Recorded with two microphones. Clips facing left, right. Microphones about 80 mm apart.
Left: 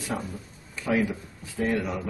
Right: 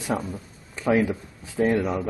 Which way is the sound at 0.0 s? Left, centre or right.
Right.